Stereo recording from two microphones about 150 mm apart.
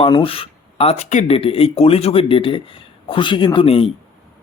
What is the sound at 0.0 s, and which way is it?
Speech, 35° left (ahead or behind).